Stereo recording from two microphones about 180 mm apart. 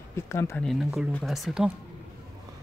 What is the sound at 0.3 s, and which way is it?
Speech, 15° left (ahead or behind).